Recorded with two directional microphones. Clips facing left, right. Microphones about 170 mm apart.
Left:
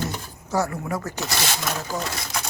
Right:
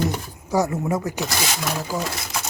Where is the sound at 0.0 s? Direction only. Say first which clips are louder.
Right 5 dB; 15° right (ahead or behind).